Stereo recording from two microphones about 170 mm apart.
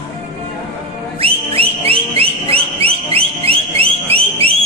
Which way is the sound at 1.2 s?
35° right (ahead or behind).